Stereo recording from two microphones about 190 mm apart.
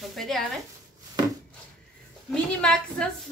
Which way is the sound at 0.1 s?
Centre (ahead or behind).